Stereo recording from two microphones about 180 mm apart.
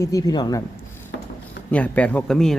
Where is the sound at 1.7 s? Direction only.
5° left (ahead or behind).